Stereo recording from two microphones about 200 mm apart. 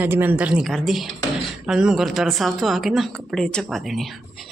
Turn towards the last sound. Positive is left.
turn(degrees=0)  # may be behind; listen again after turning